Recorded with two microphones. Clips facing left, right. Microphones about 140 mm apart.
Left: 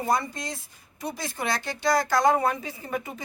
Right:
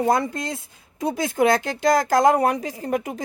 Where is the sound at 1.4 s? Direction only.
70° right (ahead or behind).